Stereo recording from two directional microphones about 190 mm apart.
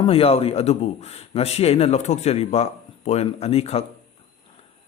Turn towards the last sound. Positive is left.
turn(degrees=35)  # may be behind; listen again after turning